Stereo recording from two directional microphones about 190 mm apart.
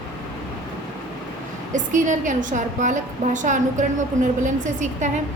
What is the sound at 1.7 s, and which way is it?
A woman's voice, 40° right (ahead or behind).